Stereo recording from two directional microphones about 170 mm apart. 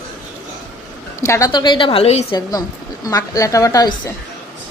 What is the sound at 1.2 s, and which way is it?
A woman's voice, 20° left (ahead or behind).